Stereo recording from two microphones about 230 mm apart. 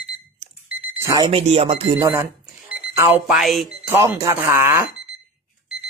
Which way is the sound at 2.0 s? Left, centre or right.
Centre.